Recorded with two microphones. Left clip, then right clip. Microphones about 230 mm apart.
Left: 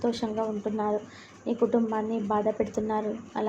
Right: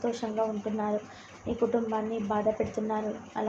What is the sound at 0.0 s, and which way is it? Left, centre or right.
Speech, left.